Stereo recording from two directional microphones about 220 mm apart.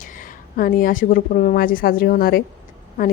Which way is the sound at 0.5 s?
40° left (ahead or behind).